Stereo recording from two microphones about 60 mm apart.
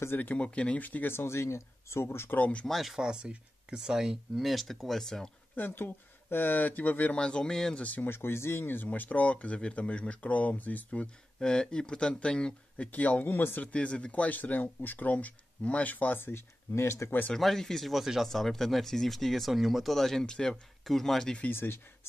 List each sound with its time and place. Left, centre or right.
0.0 s speech: left
0.3 s speech: left
1.1 s speech: left
2.3 s speech: left
2.6 s speech: centre
3.1 s speech: centre
5.6 s speech: left
7.2 s speech: centre
7.8 s speech: left
8.1 s speech: left
11.3 s speech: centre; by 17.1 s left
17.4 s speech: centre
21.5 s speech: left